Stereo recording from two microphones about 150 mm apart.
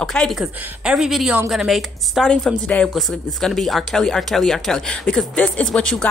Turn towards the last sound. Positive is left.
turn(degrees=5)  # may be behind; listen again after turning